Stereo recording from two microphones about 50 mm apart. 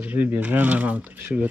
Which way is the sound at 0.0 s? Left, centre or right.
Right.